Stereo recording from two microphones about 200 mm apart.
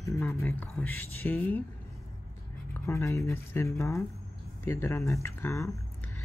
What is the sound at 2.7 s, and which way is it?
Speech, 15° left (ahead or behind).